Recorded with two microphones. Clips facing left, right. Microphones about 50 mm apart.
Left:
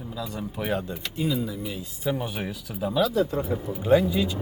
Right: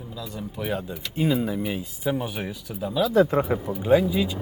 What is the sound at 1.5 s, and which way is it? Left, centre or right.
Speech, right.